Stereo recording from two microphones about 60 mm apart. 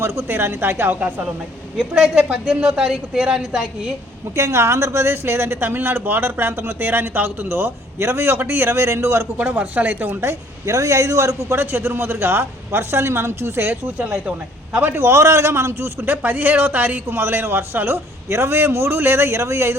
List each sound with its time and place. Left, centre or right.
0.0 s a man's voice: right
0.9 s speech: right
1.8 s a woman's voice: centre
4.4 s speech: right
9.4 s speech: right
10.7 s a man's voice: right
11.5 s speech: right
16.0 s a man's voice: right